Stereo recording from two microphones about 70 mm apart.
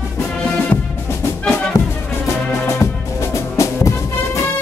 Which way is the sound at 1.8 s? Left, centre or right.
Left.